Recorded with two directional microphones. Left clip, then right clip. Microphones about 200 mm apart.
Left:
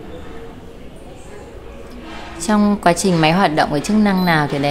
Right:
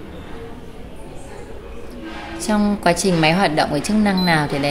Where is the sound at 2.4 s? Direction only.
20° left (ahead or behind).